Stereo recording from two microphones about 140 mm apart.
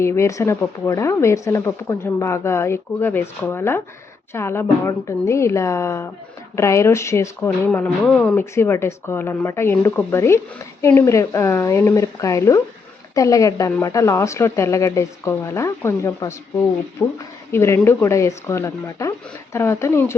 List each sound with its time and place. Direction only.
0.0 s speech: 20° left (ahead or behind)